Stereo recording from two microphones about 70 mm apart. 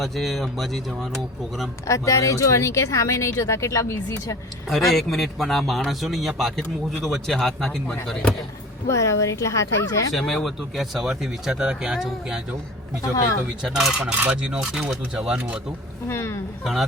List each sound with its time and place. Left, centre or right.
0.0 s speech: centre
1.9 s speech: left
4.9 s speech: centre
8.9 s speech: left
10.1 s speech: centre
13.6 s speech: centre
14.0 s cutlery: right
14.5 s speech: centre
16.0 s speech: left